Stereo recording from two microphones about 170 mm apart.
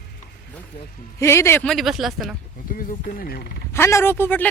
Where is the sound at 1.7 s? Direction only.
Centre (ahead or behind).